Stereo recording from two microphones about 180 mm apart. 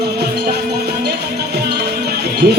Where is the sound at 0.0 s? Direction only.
60° right (ahead or behind).